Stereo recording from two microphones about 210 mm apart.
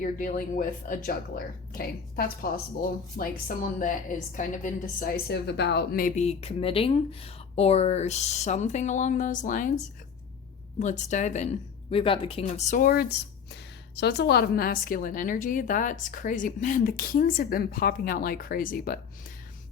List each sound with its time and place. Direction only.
0.0 s a woman's voice: 40° left (ahead or behind)
10.8 s a woman's voice: 35° left (ahead or behind)